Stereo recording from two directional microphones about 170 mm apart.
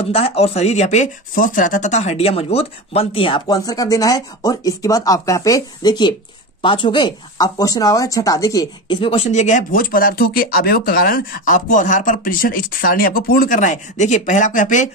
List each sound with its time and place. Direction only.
0.1 s speech: 35° left (ahead or behind)